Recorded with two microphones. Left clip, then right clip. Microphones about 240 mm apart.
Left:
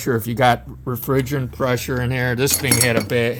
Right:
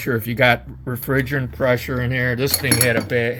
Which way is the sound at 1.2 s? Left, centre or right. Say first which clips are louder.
Right 2 dB; centre.